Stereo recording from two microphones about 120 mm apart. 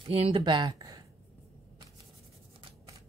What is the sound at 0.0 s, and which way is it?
Speech, 50° right (ahead or behind).